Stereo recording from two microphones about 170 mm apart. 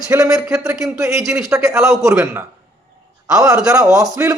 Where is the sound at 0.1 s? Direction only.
20° right (ahead or behind).